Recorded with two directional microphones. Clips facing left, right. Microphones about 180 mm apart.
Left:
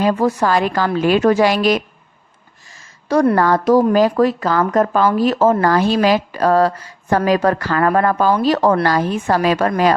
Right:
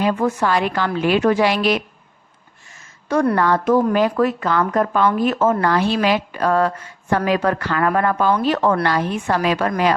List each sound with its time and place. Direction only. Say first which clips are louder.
0.0 s a woman's voice: left 3 dB; 35° left (ahead or behind)
2.6 s a sound: left 3 dB; 35° left (ahead or behind)
3.3 s speech: left 3 dB; 40° left (ahead or behind)
5.0 s speech: left 3 dB; 30° left (ahead or behind)